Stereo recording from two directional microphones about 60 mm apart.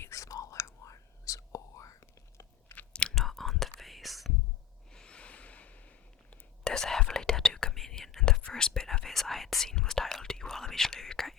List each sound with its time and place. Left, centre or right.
0.0 s whispering: left
2.7 s chewing: centre
3.2 s whispering: centre
4.9 s snort: centre
6.7 s whispering: centre